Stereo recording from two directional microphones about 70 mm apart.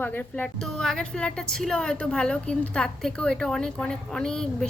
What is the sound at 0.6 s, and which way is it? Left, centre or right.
A woman's voice, centre.